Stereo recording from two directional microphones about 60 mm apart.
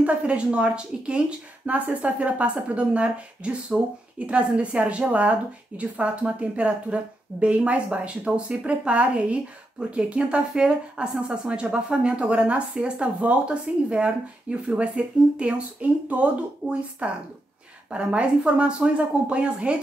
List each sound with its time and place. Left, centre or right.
0.0 s a woman's voice: centre
3.7 s speech: centre
4.3 s a woman's voice: right